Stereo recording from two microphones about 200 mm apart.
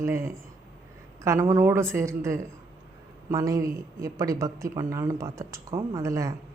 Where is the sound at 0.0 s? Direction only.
15° right (ahead or behind).